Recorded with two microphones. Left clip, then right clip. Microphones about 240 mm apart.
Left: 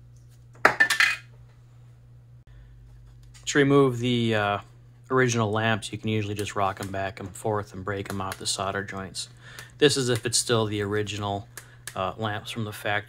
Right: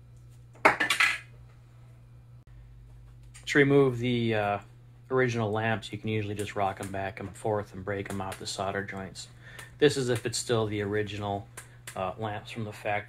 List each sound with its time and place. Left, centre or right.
3.4 s speech: centre